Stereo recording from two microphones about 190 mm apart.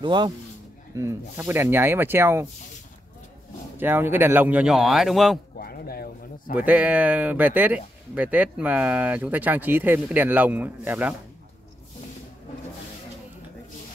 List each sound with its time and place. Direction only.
0.0 s a man's voice: 25° right (ahead or behind)
3.7 s speech: 10° right (ahead or behind)
5.6 s speech: 55° left (ahead or behind)
6.5 s speech: 5° right (ahead or behind)